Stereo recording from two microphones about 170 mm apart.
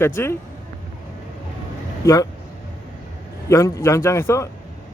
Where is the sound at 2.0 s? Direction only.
20° left (ahead or behind).